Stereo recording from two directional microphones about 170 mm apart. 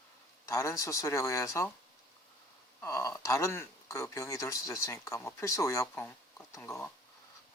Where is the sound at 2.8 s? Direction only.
15° left (ahead or behind).